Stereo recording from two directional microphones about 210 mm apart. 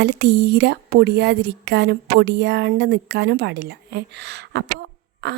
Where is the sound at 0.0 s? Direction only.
50° right (ahead or behind).